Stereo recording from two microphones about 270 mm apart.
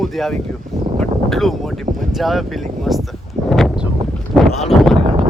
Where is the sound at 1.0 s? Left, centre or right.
Centre.